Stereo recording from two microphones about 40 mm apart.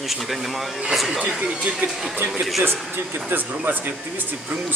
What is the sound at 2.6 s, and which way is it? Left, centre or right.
Speech, right.